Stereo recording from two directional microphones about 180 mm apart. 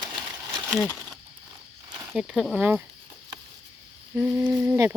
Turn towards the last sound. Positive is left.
turn(degrees=-15)  # may be behind; listen again after turning